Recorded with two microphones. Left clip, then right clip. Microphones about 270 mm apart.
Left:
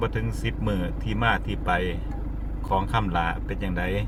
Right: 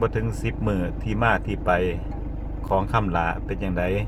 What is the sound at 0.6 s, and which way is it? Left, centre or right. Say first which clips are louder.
Speech: right 4 dB; centre.